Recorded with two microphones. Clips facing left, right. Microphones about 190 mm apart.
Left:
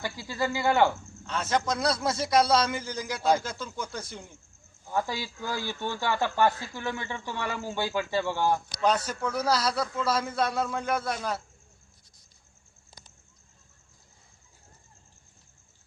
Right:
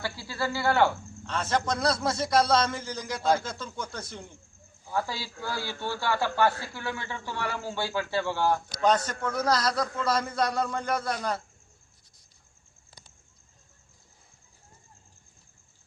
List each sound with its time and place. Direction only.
0.0 s cricket: 15° left (ahead or behind)
1.3 s a man's voice: 5° left (ahead or behind)